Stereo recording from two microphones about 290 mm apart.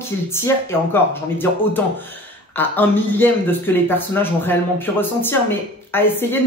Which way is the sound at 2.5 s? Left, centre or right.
Centre.